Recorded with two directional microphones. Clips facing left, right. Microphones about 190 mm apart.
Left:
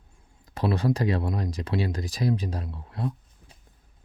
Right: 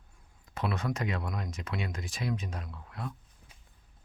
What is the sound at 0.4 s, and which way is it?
Speech, 35° left (ahead or behind).